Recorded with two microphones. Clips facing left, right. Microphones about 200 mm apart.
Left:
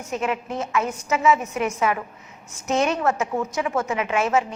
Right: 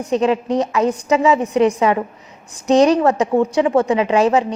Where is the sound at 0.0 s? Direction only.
35° right (ahead or behind).